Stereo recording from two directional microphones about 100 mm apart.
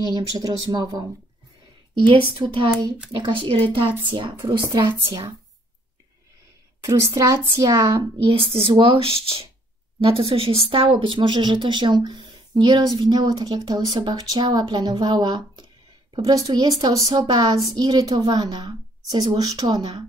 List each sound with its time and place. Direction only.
0.1 s a woman's voice: 40° right (ahead or behind)
2.0 s speech: 55° right (ahead or behind)
6.8 s a woman's voice: 30° right (ahead or behind)
8.3 s speech: 65° right (ahead or behind); by 15.6 s 45° right (ahead or behind)
16.2 s a woman's voice: 35° right (ahead or behind)